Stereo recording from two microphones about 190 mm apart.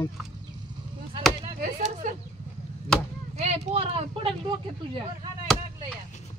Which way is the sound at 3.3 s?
35° right (ahead or behind).